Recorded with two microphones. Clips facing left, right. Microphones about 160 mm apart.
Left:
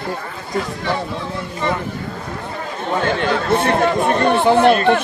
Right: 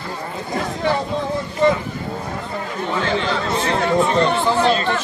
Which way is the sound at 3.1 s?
55° left (ahead or behind).